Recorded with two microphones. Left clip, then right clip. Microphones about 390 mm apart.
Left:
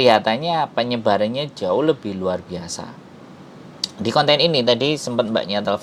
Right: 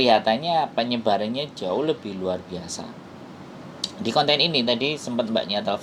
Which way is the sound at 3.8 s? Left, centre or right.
Left.